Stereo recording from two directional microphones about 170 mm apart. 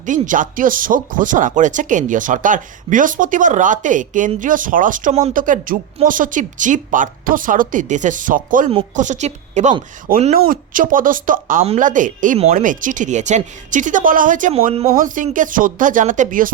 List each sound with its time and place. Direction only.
0.0 s speech: 50° right (ahead or behind)
10.1 s speech: 55° right (ahead or behind); by 14.8 s 35° right (ahead or behind)
14.9 s speech: 50° right (ahead or behind)